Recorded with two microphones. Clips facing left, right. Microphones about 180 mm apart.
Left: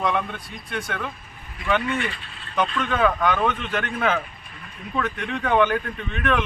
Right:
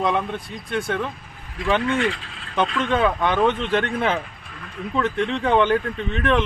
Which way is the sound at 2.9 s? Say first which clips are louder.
Even; 30° right (ahead or behind).